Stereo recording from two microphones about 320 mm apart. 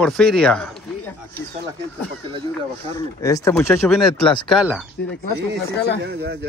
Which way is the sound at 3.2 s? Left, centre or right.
Centre.